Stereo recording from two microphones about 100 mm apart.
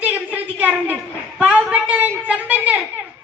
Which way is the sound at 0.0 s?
15° right (ahead or behind).